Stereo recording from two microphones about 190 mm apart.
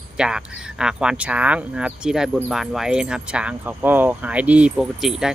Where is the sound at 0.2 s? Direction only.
5° right (ahead or behind).